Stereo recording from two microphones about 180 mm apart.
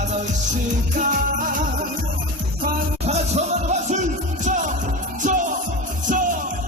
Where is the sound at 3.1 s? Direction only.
40° right (ahead or behind).